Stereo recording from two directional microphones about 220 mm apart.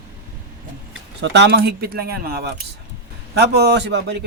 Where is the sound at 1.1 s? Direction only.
50° right (ahead or behind).